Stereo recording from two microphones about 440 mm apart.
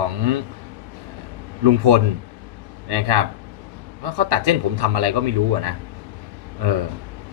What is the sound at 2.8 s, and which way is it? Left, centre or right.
A man's voice, right.